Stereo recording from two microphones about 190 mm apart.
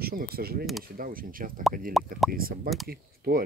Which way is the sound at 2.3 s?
50° right (ahead or behind).